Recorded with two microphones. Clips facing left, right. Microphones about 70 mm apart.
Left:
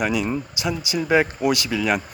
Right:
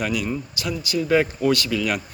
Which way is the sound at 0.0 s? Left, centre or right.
Left.